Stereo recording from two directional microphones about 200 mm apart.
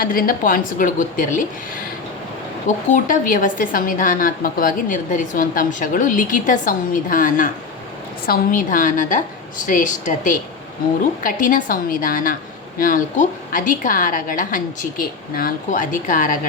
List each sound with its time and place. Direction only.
0.0 s a woman's voice: 45° left (ahead or behind)
2.6 s a woman's voice: 40° left (ahead or behind)